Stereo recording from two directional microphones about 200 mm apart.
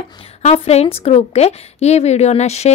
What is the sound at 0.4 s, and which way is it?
Speech, 35° left (ahead or behind).